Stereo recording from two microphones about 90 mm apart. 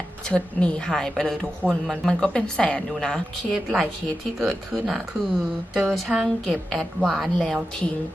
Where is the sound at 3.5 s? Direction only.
5° right (ahead or behind).